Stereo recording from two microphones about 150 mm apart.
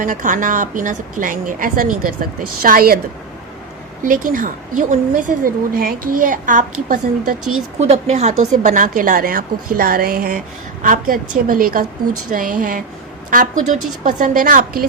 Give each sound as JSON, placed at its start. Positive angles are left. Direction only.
{"t": 0.0, "sound": "a woman's voice", "side_deg": -60}
{"t": 4.0, "sound": "a woman's voice", "side_deg": -65}
{"t": 7.8, "sound": "a woman's voice", "side_deg": -45}